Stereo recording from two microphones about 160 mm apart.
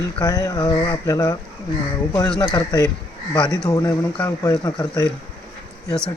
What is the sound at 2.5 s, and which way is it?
Speech, 25° left (ahead or behind).